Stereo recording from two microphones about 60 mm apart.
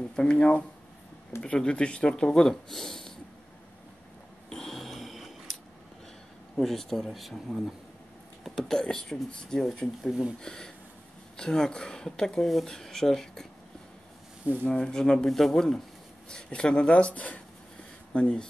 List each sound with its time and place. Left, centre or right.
0.1 s speech: centre
4.5 s a sound: centre
6.5 s speech: centre
14.7 s speech: centre